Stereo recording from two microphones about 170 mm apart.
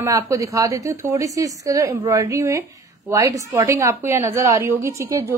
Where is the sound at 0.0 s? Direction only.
20° right (ahead or behind).